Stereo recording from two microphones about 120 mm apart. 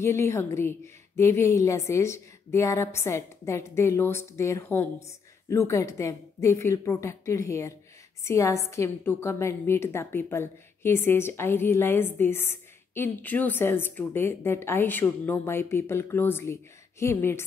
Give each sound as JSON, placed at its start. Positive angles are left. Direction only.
{"t": 0.0, "sound": "a woman's voice", "side_deg": 20}